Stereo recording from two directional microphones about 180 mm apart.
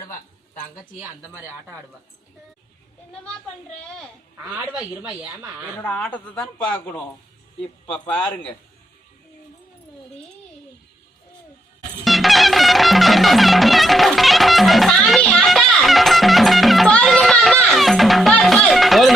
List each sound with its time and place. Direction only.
4.5 s speech: 5° right (ahead or behind)
5.7 s speech: 10° left (ahead or behind)
7.9 s speech: 5° left (ahead or behind)
12.0 s music: centre (ahead or behind)